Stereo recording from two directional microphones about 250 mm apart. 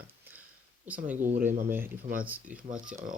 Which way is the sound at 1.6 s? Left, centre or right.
Centre.